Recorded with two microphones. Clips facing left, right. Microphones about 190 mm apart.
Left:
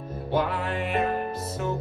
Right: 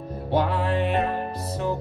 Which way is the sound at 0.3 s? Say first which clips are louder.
Right 3 dB; 30° right (ahead or behind).